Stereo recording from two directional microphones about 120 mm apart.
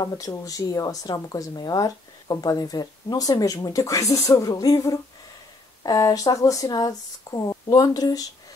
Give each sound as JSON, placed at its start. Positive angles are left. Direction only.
{"t": 0.0, "sound": "speech", "side_deg": 35}